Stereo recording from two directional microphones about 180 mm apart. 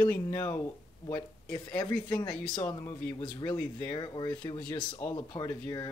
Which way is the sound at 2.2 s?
5° left (ahead or behind).